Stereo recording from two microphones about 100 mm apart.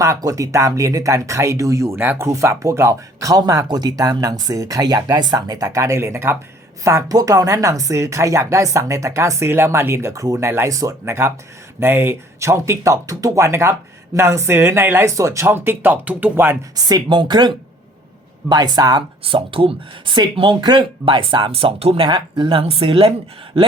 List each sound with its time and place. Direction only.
0.0 s speech: 35° right (ahead or behind)
6.8 s speech: 35° right (ahead or behind); by 16.6 s 20° right (ahead or behind)
16.7 s speech: 45° right (ahead or behind)
19.2 s speech: 60° right (ahead or behind)
21.5 s speech: 75° right (ahead or behind)
22.0 s speech: 50° right (ahead or behind); by 23.1 s 70° right (ahead or behind)